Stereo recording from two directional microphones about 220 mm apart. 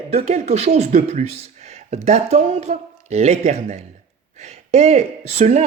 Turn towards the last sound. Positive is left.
turn(degrees=-30)  # may be behind; listen again after turning